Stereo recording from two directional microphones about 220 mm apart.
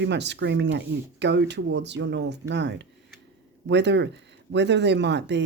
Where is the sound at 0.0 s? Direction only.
50° right (ahead or behind).